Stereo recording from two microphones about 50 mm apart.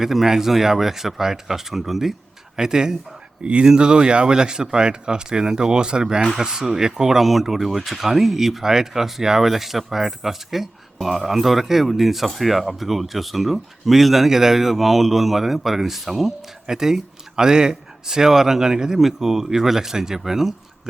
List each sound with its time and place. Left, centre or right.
0.0 s speech: centre